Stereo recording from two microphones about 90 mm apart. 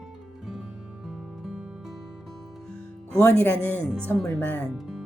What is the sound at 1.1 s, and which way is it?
Music, 5° right (ahead or behind).